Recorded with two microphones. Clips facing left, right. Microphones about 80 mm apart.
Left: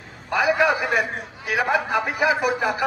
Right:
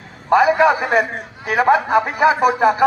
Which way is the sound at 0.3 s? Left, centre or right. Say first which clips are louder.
Right 7 dB; right.